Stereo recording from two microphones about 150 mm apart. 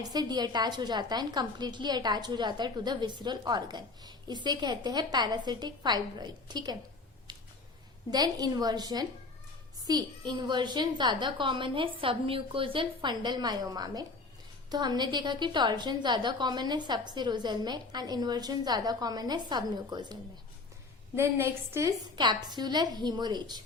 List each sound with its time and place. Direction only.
0.0 s a woman's voice: 25° right (ahead or behind)
8.1 s a woman's voice: 25° right (ahead or behind)
21.2 s a woman's voice: 15° right (ahead or behind)
22.1 s a woman's voice: 30° right (ahead or behind)